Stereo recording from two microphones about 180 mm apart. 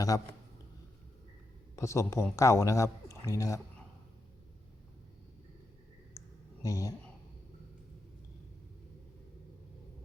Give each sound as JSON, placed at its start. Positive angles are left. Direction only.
{"t": 0.1, "sound": "a man's voice", "side_deg": 20}
{"t": 1.7, "sound": "speech", "side_deg": 15}
{"t": 6.2, "sound": "a sound", "side_deg": 15}
{"t": 6.6, "sound": "speech", "side_deg": 20}